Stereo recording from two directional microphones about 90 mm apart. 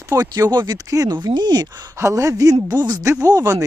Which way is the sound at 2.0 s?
35° right (ahead or behind).